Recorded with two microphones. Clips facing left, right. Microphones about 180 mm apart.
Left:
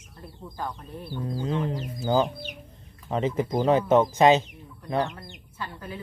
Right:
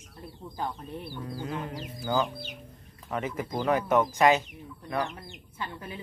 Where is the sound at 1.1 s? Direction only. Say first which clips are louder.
Left 8 dB; 20° left (ahead or behind).